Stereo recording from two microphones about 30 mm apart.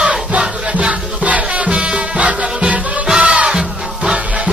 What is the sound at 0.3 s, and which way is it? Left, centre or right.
Music, right.